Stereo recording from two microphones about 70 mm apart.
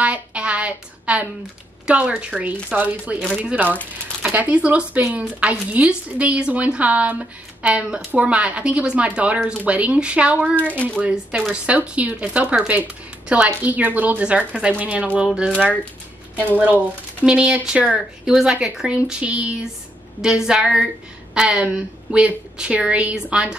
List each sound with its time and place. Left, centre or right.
0.0 s a sound: centre
1.9 s speech: centre
15.1 s speech: centre
16.6 s speech: centre